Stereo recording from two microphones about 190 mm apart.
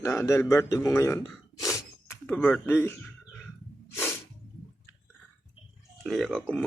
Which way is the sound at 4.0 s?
10° left (ahead or behind).